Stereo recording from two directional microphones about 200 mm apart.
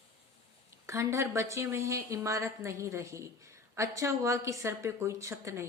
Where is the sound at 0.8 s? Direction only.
15° right (ahead or behind).